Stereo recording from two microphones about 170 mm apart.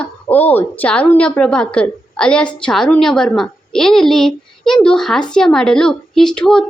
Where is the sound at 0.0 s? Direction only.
10° left (ahead or behind).